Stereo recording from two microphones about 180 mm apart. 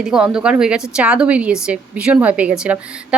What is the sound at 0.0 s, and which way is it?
A woman's voice, 5° right (ahead or behind).